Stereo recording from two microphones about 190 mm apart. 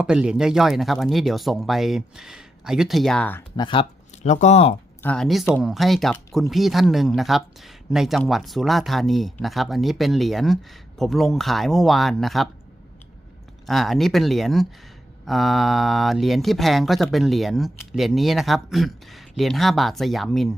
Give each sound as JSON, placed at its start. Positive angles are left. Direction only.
{"t": 0.0, "sound": "speech", "side_deg": -5}
{"t": 3.6, "sound": "speech", "side_deg": 25}
{"t": 5.0, "sound": "speech", "side_deg": 5}
{"t": 13.7, "sound": "speech", "side_deg": 0}